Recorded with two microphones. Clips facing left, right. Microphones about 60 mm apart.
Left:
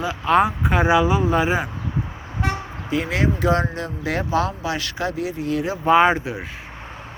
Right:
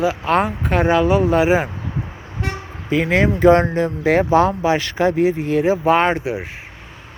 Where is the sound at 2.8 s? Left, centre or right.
Right.